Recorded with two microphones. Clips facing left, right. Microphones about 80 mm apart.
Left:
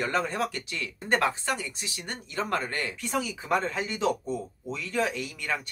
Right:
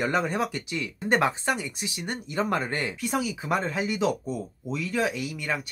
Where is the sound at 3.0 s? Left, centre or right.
Centre.